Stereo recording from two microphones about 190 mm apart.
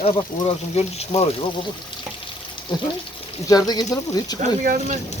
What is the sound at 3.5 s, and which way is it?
Speech, 20° left (ahead or behind).